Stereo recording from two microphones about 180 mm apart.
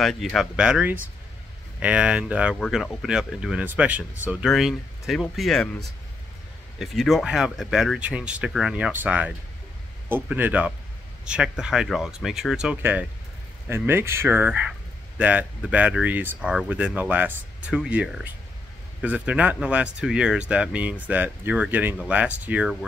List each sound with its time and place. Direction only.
0.0 s speech: centre (ahead or behind)